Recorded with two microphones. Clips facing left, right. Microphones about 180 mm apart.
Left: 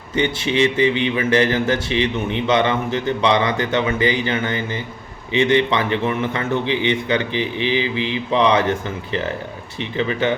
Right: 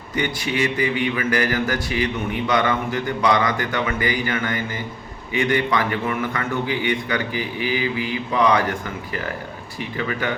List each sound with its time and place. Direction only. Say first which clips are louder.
0.2 s a man's voice: left 5 dB; 25° left (ahead or behind)
10.0 s a man's voice: left 5 dB; 25° left (ahead or behind)